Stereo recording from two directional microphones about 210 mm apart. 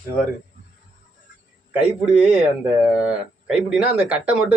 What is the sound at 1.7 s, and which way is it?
Speech, 5° right (ahead or behind).